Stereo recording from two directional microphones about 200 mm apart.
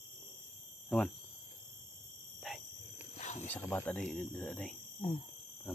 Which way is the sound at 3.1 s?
35° left (ahead or behind).